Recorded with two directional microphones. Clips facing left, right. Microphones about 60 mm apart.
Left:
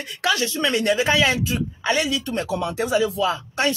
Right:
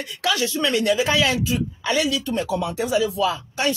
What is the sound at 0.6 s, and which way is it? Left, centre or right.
Speech, left.